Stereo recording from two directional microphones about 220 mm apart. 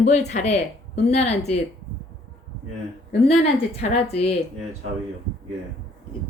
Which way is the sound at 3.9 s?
30° left (ahead or behind).